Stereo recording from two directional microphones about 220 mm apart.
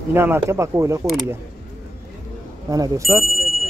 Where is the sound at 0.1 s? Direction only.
10° right (ahead or behind).